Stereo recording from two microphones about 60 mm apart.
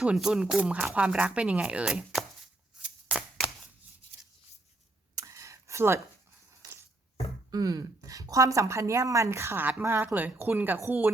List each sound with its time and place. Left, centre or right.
0.0 s speech: centre
0.6 s speech: right
2.8 s shuffling cards: right
5.1 s a sound: right
7.5 s a woman's voice: right
10.2 s a woman's voice: right